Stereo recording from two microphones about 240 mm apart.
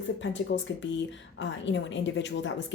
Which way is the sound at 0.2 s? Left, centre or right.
Left.